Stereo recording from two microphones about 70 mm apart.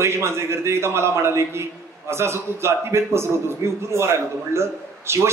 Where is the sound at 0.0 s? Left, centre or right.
Right.